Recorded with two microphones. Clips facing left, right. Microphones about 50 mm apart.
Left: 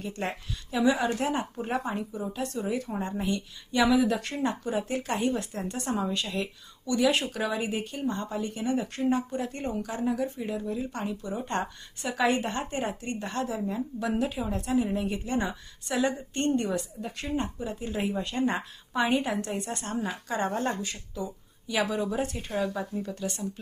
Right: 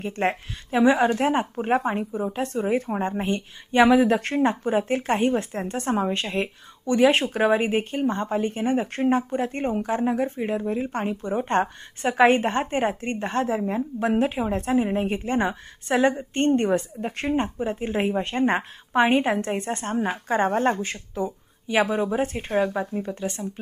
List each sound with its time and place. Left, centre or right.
0.0 s speech: right